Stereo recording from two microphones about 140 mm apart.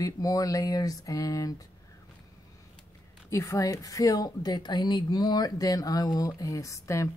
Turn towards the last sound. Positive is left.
turn(degrees=20)  # may be behind; listen again after turning